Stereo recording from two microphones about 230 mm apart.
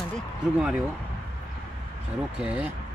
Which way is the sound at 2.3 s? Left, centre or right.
Centre.